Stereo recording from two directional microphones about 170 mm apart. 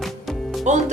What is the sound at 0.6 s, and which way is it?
Speech, 45° right (ahead or behind).